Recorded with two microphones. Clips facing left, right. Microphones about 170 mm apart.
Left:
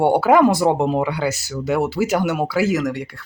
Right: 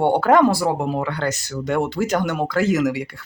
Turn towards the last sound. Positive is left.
turn(degrees=0)  # may be behind; listen again after turning